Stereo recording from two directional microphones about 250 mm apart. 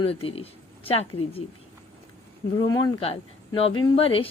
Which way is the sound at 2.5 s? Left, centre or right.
Centre.